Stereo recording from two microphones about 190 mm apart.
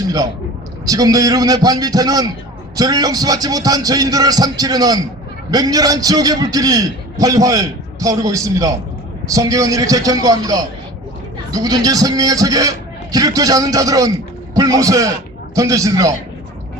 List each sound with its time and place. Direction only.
0.9 s a man's voice: 20° right (ahead or behind)